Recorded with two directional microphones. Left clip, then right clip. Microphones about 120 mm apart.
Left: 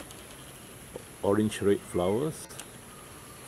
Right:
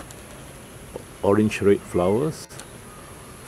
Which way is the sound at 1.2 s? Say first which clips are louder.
Right 7 dB; centre (ahead or behind).